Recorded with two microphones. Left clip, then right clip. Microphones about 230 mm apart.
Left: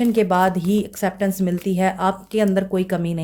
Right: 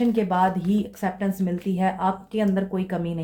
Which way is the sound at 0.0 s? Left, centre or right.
Left.